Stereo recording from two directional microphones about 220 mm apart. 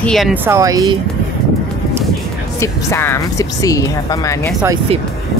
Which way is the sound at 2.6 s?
10° left (ahead or behind).